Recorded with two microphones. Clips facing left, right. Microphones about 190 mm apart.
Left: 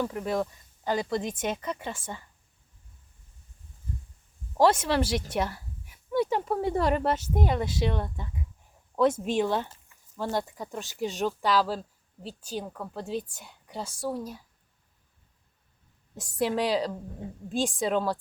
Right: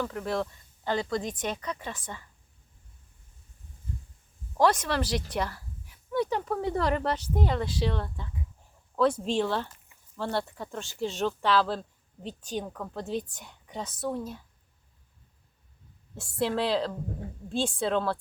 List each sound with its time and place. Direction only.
0.0 s speech: 15° left (ahead or behind)
1.7 s speech: 25° left (ahead or behind)
4.5 s a woman's voice: 25° left (ahead or behind)
6.7 s speech: 15° left (ahead or behind)
9.2 s speech: 10° left (ahead or behind)
16.2 s speech: 10° left (ahead or behind)